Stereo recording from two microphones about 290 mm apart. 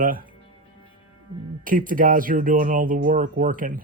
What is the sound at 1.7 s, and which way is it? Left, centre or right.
Speech, right.